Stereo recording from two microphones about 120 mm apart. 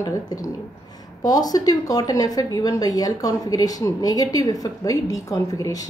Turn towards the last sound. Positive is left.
turn(degrees=30)  # may be behind; listen again after turning